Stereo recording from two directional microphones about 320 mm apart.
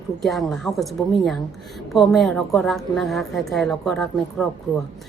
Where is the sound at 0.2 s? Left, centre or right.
Centre.